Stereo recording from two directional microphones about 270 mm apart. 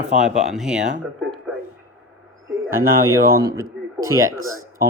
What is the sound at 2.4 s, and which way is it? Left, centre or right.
Bird, right.